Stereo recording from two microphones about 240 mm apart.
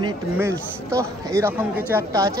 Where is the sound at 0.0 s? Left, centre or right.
Centre.